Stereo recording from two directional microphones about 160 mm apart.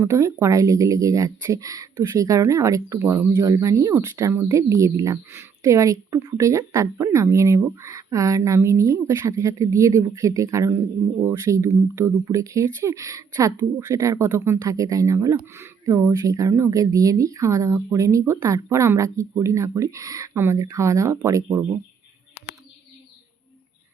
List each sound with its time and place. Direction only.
0.0 s speech: 20° right (ahead or behind)